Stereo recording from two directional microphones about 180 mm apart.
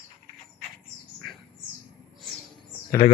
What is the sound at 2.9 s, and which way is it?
Speech, 20° left (ahead or behind).